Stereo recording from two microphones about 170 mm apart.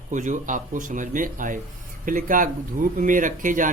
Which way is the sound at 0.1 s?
45° right (ahead or behind).